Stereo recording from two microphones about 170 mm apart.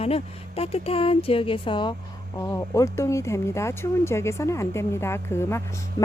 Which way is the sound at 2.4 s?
20° left (ahead or behind).